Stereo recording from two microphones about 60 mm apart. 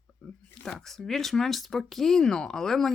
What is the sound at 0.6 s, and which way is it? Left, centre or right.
Speech, centre.